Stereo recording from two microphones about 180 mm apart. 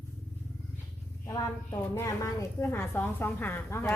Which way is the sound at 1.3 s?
15° left (ahead or behind).